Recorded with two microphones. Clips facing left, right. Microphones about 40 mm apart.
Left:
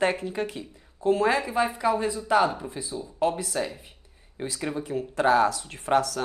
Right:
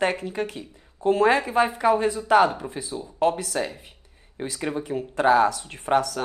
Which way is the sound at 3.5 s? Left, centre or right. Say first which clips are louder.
Right 2 dB; right.